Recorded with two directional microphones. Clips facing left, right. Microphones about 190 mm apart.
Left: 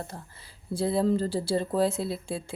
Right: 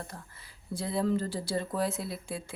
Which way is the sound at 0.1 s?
30° left (ahead or behind).